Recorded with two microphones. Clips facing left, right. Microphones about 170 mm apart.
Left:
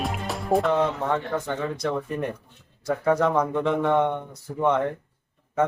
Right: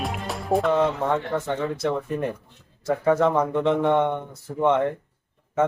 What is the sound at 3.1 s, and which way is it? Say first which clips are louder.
Speech: right 2 dB; centre (ahead or behind).